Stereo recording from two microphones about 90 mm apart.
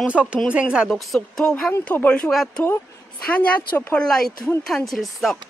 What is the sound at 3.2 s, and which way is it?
Speech, 15° left (ahead or behind).